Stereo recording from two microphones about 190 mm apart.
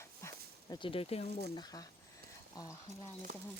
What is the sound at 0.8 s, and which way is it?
Speech, 30° left (ahead or behind).